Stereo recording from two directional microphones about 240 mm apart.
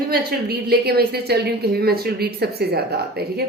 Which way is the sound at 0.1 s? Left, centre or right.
Right.